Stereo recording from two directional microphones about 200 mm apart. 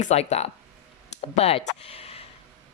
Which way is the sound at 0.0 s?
35° left (ahead or behind).